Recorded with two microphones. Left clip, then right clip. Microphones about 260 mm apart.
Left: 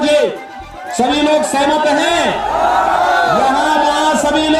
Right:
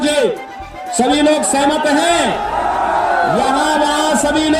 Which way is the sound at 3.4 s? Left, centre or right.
Right.